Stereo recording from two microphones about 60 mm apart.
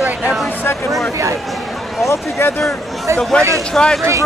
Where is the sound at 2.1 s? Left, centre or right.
Left.